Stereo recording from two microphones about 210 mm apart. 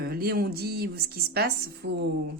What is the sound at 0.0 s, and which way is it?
A woman's voice, 45° right (ahead or behind).